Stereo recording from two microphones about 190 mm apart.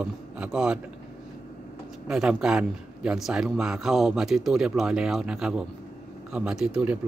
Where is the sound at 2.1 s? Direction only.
5° right (ahead or behind).